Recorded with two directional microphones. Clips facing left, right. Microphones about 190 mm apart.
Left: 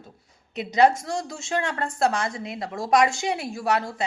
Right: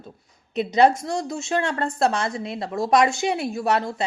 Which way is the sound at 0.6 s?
20° right (ahead or behind).